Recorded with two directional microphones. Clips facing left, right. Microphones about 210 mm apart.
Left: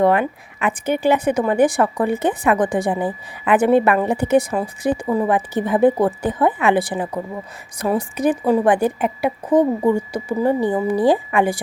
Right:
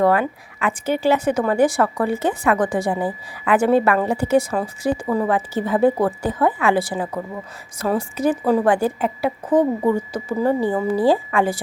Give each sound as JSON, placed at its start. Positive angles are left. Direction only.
{"t": 0.0, "sound": "speech", "side_deg": 20}